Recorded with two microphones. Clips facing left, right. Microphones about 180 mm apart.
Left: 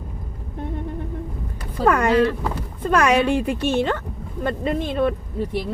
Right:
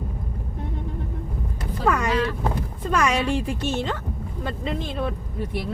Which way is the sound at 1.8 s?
55° left (ahead or behind).